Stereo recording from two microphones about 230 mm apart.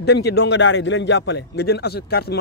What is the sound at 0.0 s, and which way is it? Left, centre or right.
Speech, left.